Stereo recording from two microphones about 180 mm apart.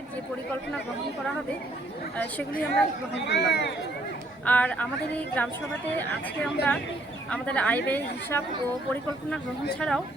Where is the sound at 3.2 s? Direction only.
70° left (ahead or behind).